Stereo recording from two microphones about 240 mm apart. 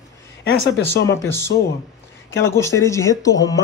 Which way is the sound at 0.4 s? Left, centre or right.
Left.